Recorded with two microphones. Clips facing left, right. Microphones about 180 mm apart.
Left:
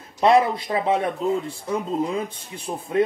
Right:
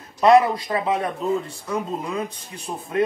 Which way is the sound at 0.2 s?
30° left (ahead or behind).